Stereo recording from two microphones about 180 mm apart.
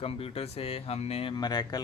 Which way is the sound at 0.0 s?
35° left (ahead or behind).